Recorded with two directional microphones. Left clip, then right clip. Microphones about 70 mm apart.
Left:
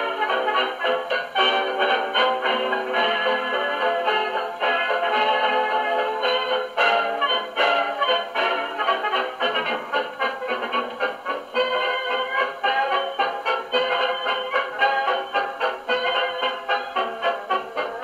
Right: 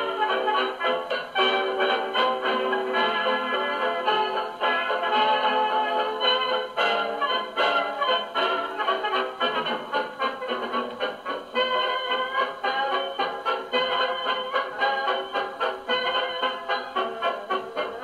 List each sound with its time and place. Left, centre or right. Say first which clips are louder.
0.3 s music: left 2 dB; right
12.1 s music: left 2 dB; right